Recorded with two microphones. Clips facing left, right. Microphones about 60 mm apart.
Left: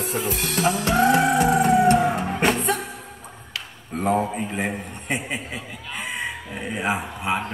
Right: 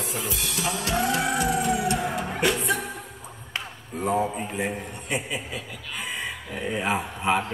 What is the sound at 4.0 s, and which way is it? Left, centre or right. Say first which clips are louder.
Speech: left 3 dB; left.